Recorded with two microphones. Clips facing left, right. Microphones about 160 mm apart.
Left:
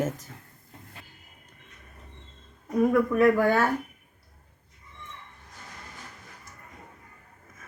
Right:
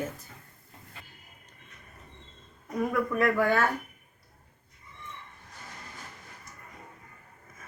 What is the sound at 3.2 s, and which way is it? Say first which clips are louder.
Speech: left 3 dB; 25° left (ahead or behind).